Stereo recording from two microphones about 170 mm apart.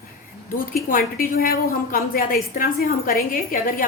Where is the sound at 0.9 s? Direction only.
60° left (ahead or behind).